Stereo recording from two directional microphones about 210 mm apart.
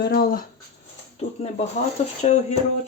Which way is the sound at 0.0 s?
45° left (ahead or behind).